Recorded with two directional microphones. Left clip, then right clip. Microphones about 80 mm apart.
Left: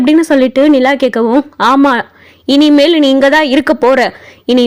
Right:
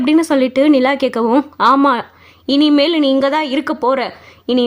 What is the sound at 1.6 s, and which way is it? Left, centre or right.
A woman's voice, left.